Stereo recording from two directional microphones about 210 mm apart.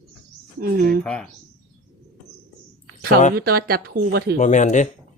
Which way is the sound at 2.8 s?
45° right (ahead or behind).